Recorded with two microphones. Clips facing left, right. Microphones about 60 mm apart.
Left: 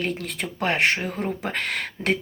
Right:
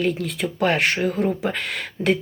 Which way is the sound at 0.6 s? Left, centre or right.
Left.